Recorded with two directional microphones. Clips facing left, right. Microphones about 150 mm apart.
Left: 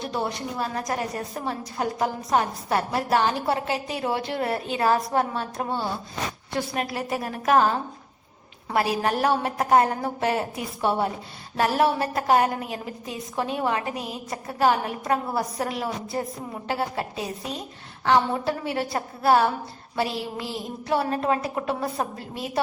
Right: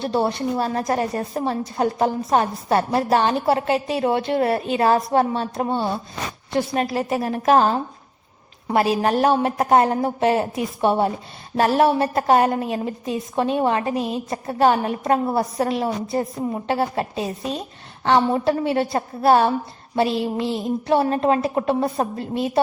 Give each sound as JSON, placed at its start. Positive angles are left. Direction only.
{"t": 0.0, "sound": "a woman's voice", "side_deg": -30}